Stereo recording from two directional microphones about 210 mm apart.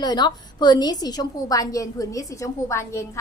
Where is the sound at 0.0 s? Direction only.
20° left (ahead or behind).